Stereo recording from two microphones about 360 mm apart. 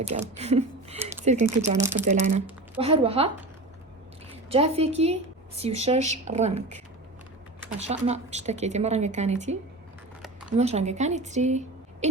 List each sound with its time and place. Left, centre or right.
0.0 s a woman's voice: centre
1.8 s speech: centre
2.0 s speech: centre
4.4 s speech: centre
7.9 s a woman's voice: centre
10.6 s a woman's voice: centre